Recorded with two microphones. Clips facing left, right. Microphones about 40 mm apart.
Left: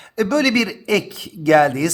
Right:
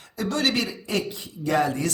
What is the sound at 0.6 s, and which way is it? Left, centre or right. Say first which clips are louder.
A man's voice: left 8 dB; left.